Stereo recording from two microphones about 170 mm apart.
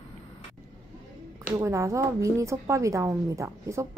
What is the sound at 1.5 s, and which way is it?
A woman's voice, 15° right (ahead or behind).